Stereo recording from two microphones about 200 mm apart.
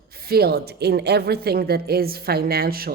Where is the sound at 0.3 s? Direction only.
50° right (ahead or behind).